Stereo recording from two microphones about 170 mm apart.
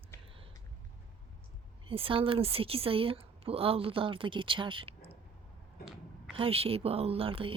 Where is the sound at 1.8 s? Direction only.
30° right (ahead or behind).